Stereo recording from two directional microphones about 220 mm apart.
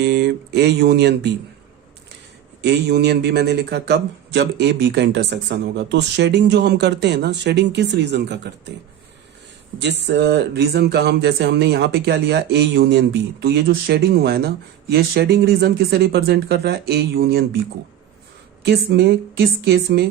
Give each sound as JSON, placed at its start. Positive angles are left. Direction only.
{"t": 0.0, "sound": "speech", "side_deg": -50}
{"t": 2.6, "sound": "speech", "side_deg": -50}
{"t": 9.7, "sound": "speech", "side_deg": -50}
{"t": 18.6, "sound": "speech", "side_deg": -50}